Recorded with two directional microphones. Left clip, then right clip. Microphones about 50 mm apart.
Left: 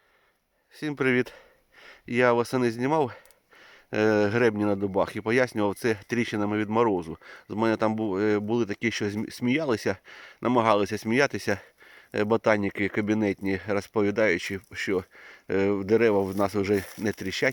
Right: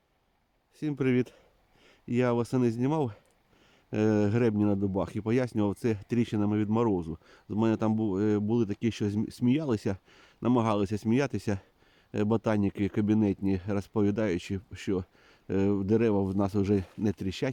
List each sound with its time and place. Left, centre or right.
0.8 s speech: centre; by 17.5 s right